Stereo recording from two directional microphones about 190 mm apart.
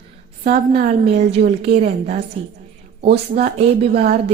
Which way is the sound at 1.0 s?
35° right (ahead or behind).